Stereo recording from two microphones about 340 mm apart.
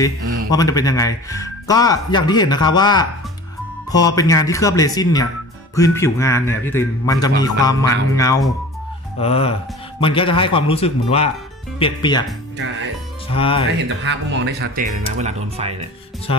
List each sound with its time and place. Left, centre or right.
0.5 s a man's voice: centre
13.3 s a man's voice: centre
13.8 s speech: right